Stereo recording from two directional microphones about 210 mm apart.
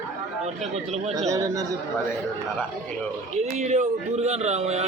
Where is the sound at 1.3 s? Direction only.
15° right (ahead or behind).